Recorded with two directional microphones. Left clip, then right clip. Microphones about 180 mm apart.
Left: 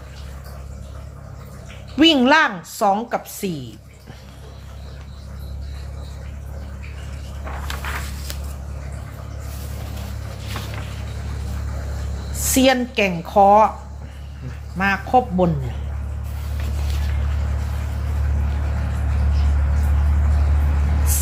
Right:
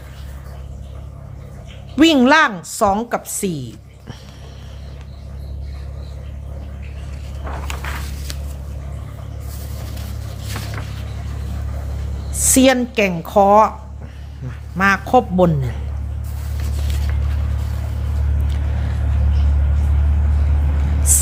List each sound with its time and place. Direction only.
2.0 s a woman's voice: 30° right (ahead or behind)
10.5 s vehicle: 40° right (ahead or behind)
12.4 s a woman's voice: 25° right (ahead or behind)
14.8 s a man's voice: 35° right (ahead or behind)